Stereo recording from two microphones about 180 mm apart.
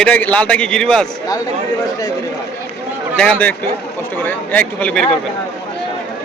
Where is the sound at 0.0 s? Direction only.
10° left (ahead or behind).